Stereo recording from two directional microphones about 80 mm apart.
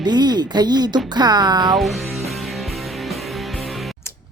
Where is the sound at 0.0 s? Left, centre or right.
Right.